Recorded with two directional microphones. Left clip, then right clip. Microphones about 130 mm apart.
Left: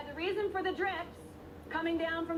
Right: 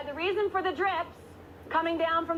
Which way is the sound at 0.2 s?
20° left (ahead or behind).